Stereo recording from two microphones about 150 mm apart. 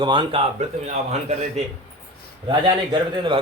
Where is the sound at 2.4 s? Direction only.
30° right (ahead or behind).